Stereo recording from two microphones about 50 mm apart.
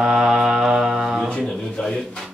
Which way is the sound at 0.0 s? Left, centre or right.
Centre.